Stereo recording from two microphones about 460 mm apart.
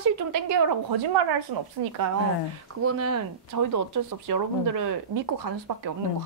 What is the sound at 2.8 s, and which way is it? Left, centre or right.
Speech, right.